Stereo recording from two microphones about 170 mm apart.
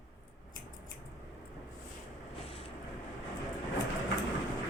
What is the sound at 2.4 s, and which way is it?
Vehicle, 35° left (ahead or behind).